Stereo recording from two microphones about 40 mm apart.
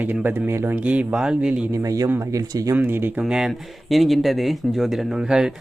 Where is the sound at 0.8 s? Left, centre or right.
Right.